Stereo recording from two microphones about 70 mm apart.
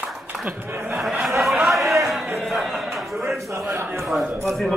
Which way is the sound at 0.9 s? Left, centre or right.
Centre.